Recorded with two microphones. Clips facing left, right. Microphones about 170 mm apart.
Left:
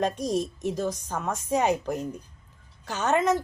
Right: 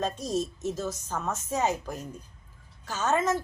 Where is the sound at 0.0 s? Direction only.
15° left (ahead or behind).